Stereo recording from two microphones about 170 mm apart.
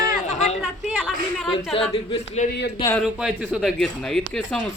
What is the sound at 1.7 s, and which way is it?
Speech, 35° left (ahead or behind).